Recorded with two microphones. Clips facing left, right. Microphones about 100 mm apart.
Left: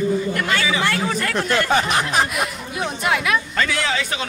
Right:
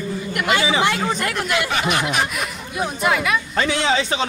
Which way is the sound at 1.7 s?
35° left (ahead or behind).